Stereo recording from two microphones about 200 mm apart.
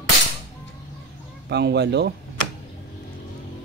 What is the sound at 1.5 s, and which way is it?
Speech, 55° right (ahead or behind).